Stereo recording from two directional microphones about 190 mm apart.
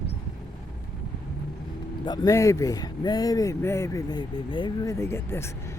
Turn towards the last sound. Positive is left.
turn(degrees=15)  # may be behind; listen again after turning